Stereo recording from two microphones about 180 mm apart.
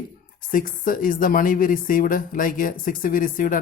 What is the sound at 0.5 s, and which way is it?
Speech, 50° left (ahead or behind).